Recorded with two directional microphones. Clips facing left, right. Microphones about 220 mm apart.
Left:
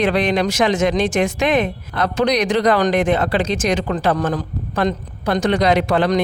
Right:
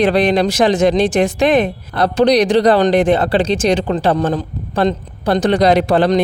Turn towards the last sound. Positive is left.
turn(degrees=-35)  # may be behind; listen again after turning